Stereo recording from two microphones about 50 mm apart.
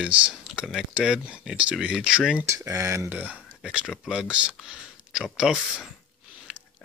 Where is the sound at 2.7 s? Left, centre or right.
Right.